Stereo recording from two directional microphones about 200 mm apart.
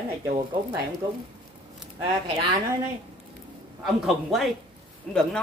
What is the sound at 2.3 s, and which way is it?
Speech, 20° right (ahead or behind).